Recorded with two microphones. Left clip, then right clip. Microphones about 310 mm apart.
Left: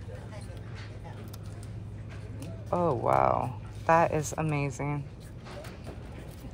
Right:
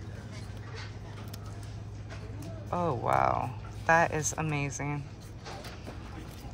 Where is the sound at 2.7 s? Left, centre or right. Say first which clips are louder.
Left 3 dB; centre.